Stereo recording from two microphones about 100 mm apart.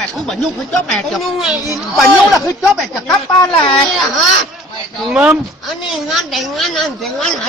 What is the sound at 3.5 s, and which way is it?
Speech, 55° left (ahead or behind).